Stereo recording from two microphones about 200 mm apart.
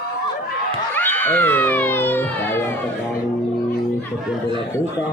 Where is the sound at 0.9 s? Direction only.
10° left (ahead or behind).